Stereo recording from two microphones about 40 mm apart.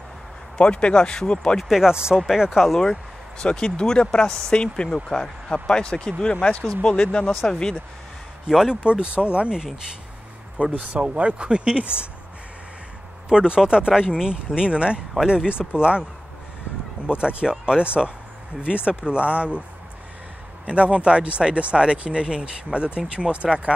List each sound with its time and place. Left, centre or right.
0.6 s speech: left
1.8 s speech: centre
2.8 s a sound: centre
3.4 s speech: left
8.5 s speech: centre
8.8 s speech: right
10.9 s speech: right
13.3 s speech: right
20.6 s speech: right